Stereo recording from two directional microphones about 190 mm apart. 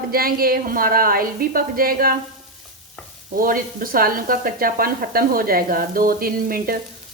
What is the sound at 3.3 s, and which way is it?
Speech, 45° right (ahead or behind).